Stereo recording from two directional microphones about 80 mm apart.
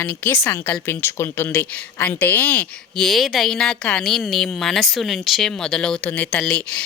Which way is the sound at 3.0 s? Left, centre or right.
Centre.